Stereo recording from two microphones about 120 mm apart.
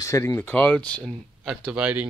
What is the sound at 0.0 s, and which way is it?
Speech, 25° left (ahead or behind).